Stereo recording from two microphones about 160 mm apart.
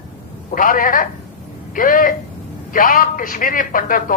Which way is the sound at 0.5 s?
60° left (ahead or behind).